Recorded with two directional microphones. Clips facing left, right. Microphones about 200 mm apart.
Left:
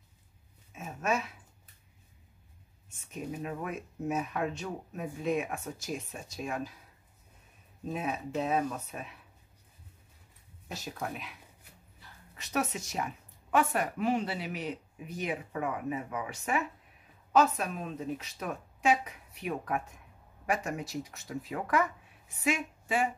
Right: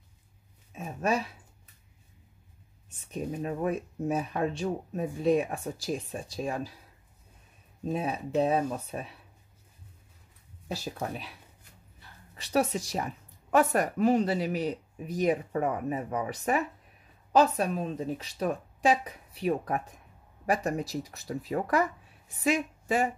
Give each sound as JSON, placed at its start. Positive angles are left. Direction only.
{"t": 0.7, "sound": "a sound", "side_deg": -35}
{"t": 3.1, "sound": "a woman's voice", "side_deg": -35}
{"t": 7.9, "sound": "a woman's voice", "side_deg": -30}
{"t": 10.7, "sound": "a woman's voice", "side_deg": -30}
{"t": 12.4, "sound": "a woman's voice", "side_deg": -35}